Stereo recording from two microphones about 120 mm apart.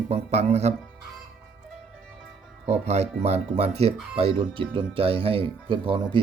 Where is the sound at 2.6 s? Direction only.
65° right (ahead or behind).